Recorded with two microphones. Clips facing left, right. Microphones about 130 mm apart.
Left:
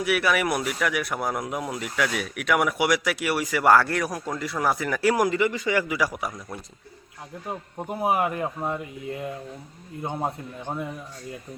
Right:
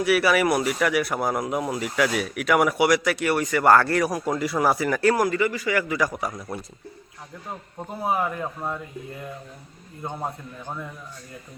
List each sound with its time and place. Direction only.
0.0 s speech: centre (ahead or behind)
5.1 s a man's voice: 20° left (ahead or behind)
5.9 s speech: 10° left (ahead or behind)
7.8 s speech: 10° left (ahead or behind)
10.0 s a man's voice: 20° left (ahead or behind)